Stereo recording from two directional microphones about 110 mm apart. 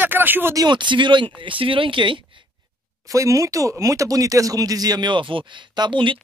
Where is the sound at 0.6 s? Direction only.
45° right (ahead or behind).